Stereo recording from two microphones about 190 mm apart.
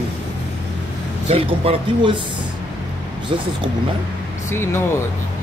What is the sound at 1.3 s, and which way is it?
Speech, 30° right (ahead or behind).